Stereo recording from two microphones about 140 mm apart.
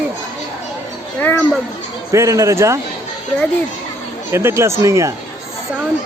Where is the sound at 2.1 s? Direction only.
20° right (ahead or behind).